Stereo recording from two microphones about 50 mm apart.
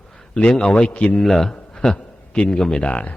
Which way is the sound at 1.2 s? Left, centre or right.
Centre.